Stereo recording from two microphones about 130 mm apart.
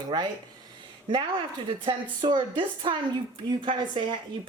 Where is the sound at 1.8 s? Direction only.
35° right (ahead or behind).